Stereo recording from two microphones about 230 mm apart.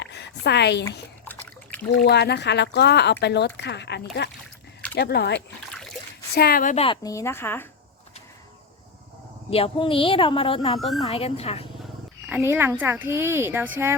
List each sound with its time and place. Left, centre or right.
0.0 s a woman's voice: left
1.2 s a sound: centre
1.9 s a woman's voice: left; by 7.7 s centre
9.5 s a woman's voice: left
10.8 s a woman's voice: centre
11.1 s a woman's voice: left
12.3 s speech: centre